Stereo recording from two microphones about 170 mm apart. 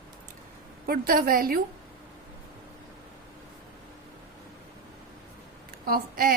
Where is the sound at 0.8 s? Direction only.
60° right (ahead or behind).